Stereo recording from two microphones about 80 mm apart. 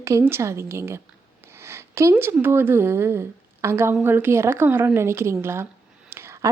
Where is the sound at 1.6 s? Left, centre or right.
Right.